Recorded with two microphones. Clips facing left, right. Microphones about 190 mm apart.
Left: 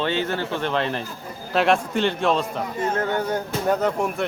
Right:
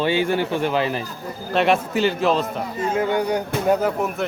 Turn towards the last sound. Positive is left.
turn(degrees=-5)  # may be behind; listen again after turning